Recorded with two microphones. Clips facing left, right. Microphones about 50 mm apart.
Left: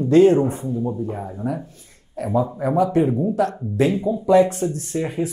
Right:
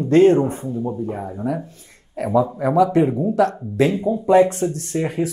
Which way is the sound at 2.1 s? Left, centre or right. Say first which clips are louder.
Right 3 dB; right.